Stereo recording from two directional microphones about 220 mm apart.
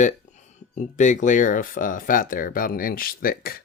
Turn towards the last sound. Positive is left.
turn(degrees=40)  # may be behind; listen again after turning